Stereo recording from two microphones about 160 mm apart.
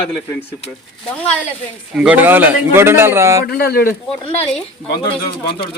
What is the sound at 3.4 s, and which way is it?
Speech, 70° left (ahead or behind).